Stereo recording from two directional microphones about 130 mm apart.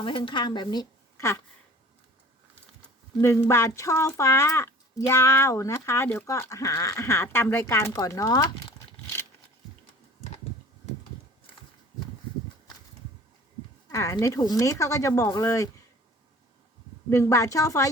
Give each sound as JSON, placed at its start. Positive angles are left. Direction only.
{"t": 0.0, "sound": "a woman's voice", "side_deg": 40}
{"t": 3.2, "sound": "speech", "side_deg": 20}
{"t": 13.9, "sound": "speech", "side_deg": 25}
{"t": 17.1, "sound": "speech", "side_deg": 25}